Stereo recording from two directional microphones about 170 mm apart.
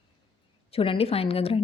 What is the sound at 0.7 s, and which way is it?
Speech, 35° left (ahead or behind).